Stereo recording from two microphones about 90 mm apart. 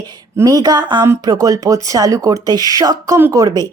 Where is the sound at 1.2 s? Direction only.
40° right (ahead or behind).